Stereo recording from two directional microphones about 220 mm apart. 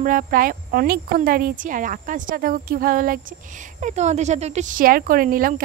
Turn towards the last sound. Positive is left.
turn(degrees=-40)  # may be behind; listen again after turning